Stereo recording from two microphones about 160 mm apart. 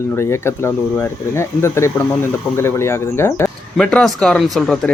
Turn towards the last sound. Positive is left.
turn(degrees=0)  # may be behind; listen again after turning